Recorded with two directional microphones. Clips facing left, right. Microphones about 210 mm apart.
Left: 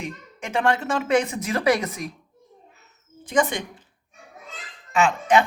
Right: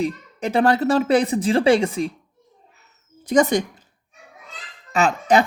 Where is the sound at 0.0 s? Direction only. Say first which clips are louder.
Right 10 dB; 35° right (ahead or behind).